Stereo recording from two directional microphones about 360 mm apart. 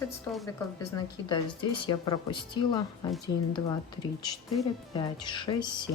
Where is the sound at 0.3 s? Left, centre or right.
Centre.